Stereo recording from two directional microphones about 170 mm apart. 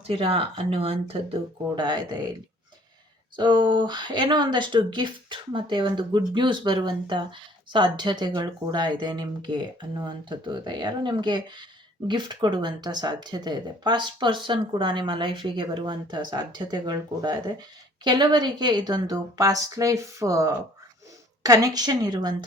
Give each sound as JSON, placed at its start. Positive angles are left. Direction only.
{"t": 0.1, "sound": "speech", "side_deg": -35}
{"t": 3.3, "sound": "speech", "side_deg": -25}